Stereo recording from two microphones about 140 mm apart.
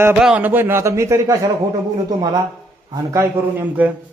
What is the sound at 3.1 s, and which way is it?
Speech, 15° right (ahead or behind).